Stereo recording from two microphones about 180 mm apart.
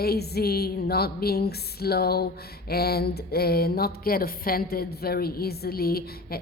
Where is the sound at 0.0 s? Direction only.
60° left (ahead or behind).